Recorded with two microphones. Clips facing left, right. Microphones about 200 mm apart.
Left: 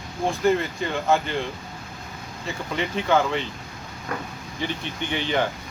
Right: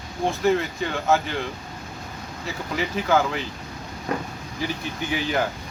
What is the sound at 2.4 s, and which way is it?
Speech, 5° right (ahead or behind).